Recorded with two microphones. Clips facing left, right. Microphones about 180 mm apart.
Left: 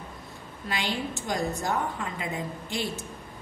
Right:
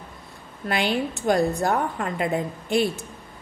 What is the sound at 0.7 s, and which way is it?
A woman's voice, 60° right (ahead or behind).